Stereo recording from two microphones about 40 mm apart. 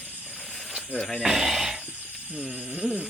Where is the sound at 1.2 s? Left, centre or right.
Centre.